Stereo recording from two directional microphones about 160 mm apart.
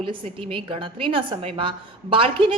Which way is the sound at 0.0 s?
35° right (ahead or behind).